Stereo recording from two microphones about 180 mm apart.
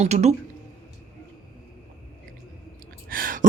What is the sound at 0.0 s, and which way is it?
Speech, 40° right (ahead or behind).